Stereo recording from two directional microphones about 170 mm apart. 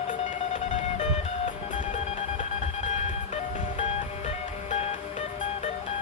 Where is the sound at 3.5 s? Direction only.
45° left (ahead or behind).